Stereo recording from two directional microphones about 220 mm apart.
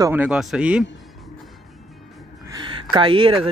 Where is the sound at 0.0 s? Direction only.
10° right (ahead or behind).